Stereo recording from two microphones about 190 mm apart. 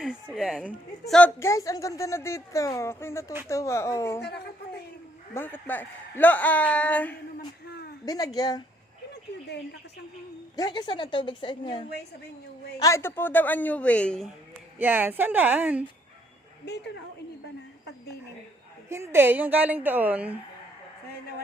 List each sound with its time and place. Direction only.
0.0 s speech: centre (ahead or behind)
1.4 s a woman's voice: 15° left (ahead or behind)
4.2 s a woman's voice: 60° left (ahead or behind)
5.3 s a woman's voice: 10° left (ahead or behind)
8.0 s a woman's voice: 20° left (ahead or behind)
10.6 s a woman's voice: 20° left (ahead or behind)
12.8 s a woman's voice: 15° left (ahead or behind)
14.8 s a woman's voice: 10° right (ahead or behind)
16.6 s a woman's voice: 60° left (ahead or behind)
18.9 s a woman's voice: 15° right (ahead or behind)